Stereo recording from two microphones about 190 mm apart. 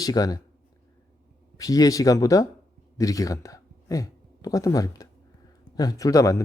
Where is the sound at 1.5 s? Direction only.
20° left (ahead or behind).